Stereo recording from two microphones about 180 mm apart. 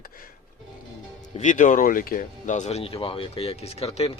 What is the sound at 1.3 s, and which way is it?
Speech, 45° left (ahead or behind).